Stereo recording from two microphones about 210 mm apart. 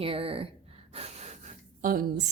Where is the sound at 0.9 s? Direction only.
30° right (ahead or behind).